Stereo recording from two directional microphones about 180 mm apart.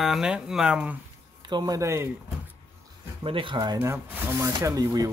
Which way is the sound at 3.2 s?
30° right (ahead or behind).